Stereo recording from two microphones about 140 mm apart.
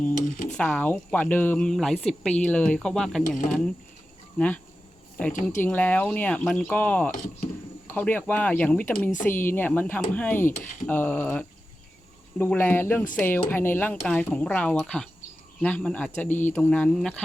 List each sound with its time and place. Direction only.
0.1 s speech: 60° left (ahead or behind)
0.5 s speech: 10° left (ahead or behind)
4.4 s speech: 10° left (ahead or behind)
5.3 s speech: 65° left (ahead or behind)
5.6 s speech: 10° left (ahead or behind)
7.1 s speech: 70° left (ahead or behind)
7.9 s speech: 10° left (ahead or behind)